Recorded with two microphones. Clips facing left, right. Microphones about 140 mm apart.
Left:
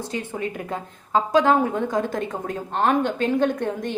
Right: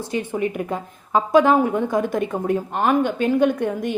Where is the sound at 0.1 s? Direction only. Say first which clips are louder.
Right 8 dB; 15° right (ahead or behind).